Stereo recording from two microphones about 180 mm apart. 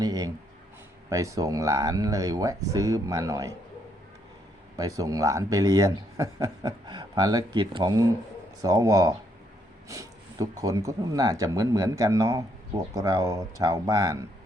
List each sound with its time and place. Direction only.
0.0 s a sound: 20° right (ahead or behind)
1.1 s speech: 15° right (ahead or behind)
4.8 s speech: 20° right (ahead or behind)